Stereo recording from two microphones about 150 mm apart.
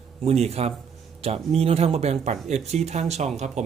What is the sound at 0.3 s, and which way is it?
Speech, 45° right (ahead or behind).